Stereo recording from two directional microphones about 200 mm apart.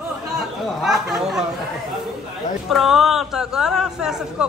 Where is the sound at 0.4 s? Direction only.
Centre (ahead or behind).